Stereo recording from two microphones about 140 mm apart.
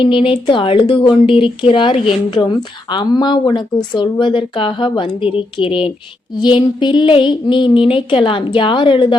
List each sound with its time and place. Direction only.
0.0 s speech: 40° left (ahead or behind)